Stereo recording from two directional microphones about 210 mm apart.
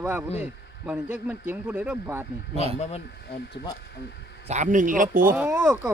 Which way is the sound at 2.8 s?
30° left (ahead or behind).